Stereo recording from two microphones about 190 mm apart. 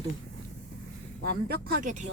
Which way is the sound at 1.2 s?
55° right (ahead or behind).